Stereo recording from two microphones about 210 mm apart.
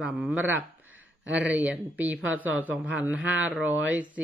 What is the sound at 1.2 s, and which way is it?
Speech, 60° right (ahead or behind).